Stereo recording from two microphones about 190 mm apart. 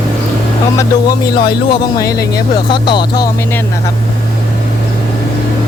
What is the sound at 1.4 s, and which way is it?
Speech, 20° left (ahead or behind).